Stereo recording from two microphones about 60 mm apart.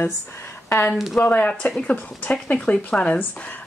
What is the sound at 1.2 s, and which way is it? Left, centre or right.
Speech, left.